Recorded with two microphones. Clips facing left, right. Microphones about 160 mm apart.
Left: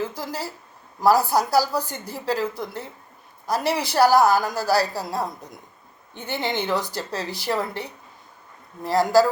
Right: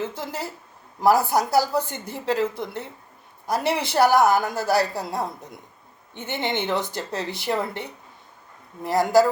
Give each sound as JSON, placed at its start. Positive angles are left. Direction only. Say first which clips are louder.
{"t": 0.0, "sound": "speech", "louder": "left 1 dB", "side_deg": -25}